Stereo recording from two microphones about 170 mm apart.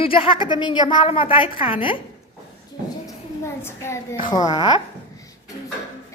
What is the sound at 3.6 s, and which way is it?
A woman's voice, 15° left (ahead or behind).